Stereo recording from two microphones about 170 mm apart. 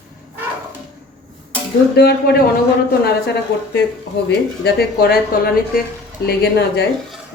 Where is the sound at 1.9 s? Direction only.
65° left (ahead or behind).